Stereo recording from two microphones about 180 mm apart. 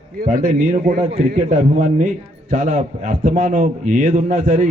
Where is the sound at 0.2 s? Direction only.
50° right (ahead or behind).